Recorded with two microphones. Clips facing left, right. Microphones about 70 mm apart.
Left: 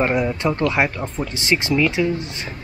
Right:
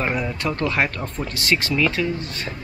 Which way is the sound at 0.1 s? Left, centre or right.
Centre.